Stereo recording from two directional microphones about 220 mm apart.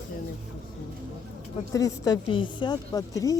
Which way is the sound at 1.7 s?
15° left (ahead or behind).